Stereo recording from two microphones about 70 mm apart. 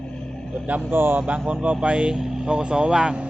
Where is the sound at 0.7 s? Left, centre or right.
Right.